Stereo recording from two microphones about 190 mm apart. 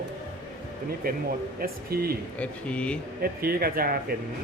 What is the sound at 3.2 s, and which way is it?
Speech, 55° right (ahead or behind).